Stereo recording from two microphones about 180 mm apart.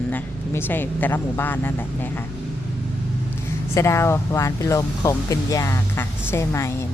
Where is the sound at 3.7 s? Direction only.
15° left (ahead or behind).